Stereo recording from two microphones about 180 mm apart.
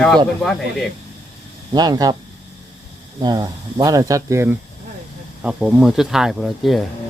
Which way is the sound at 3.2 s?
20° right (ahead or behind).